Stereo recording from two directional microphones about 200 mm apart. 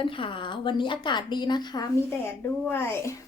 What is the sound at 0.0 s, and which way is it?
A woman's voice, 25° left (ahead or behind).